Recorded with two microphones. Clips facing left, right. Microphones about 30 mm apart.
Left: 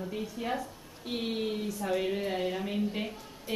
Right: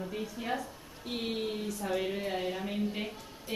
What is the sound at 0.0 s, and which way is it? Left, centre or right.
A man's voice, centre.